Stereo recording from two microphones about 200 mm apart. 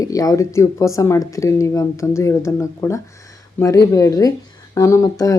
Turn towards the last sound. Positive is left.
turn(degrees=15)  # may be behind; listen again after turning